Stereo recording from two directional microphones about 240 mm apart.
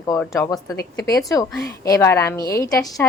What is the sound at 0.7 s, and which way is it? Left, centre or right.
Speech, left.